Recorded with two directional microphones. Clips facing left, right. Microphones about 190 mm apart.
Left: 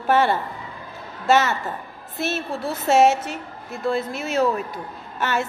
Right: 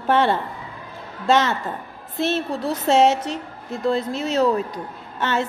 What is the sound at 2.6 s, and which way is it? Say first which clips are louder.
Speech: even; 10° left (ahead or behind).